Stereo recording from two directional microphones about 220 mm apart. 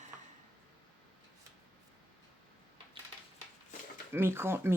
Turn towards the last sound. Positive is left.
turn(degrees=-10)  # may be behind; listen again after turning